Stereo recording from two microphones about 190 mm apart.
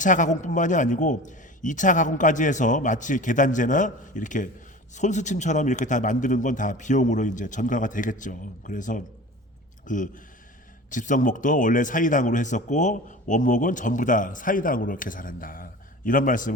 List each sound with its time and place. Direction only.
0.0 s a man's voice: 40° left (ahead or behind)